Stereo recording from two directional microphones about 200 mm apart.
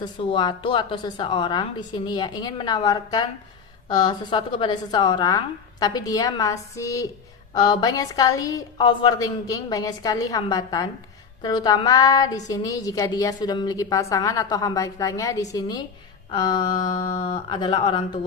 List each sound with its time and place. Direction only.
0.0 s a woman's voice: 25° left (ahead or behind)